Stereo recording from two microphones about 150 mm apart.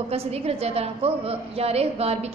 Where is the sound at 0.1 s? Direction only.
40° right (ahead or behind).